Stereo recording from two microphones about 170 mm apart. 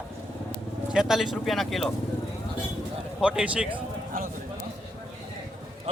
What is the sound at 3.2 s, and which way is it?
Speech, 5° right (ahead or behind).